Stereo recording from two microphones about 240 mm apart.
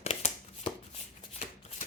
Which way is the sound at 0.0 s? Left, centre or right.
Left.